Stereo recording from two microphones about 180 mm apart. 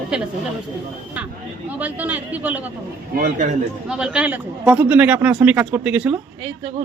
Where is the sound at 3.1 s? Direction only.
50° right (ahead or behind).